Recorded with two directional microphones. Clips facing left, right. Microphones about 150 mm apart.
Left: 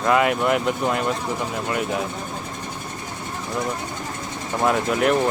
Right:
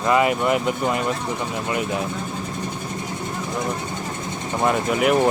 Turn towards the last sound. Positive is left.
turn(degrees=-5)  # may be behind; listen again after turning